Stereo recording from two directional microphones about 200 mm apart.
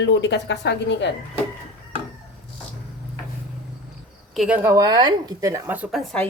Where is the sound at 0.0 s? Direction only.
60° left (ahead or behind).